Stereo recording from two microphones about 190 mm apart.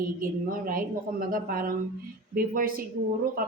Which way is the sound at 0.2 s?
50° right (ahead or behind).